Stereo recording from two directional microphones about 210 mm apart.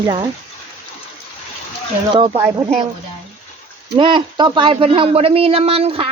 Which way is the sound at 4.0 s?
20° right (ahead or behind).